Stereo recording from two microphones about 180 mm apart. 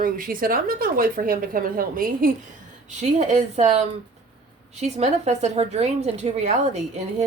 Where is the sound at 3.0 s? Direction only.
40° right (ahead or behind).